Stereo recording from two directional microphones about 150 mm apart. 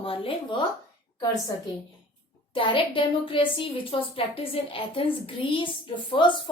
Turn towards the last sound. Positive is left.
turn(degrees=30)  # may be behind; listen again after turning